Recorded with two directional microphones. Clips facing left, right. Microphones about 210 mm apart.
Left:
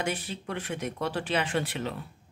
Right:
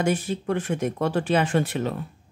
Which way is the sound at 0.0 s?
45° right (ahead or behind).